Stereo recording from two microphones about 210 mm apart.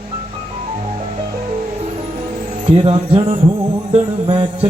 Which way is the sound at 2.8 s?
25° right (ahead or behind).